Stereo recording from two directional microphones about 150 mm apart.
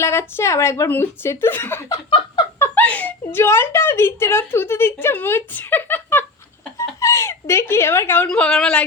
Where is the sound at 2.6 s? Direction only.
10° left (ahead or behind).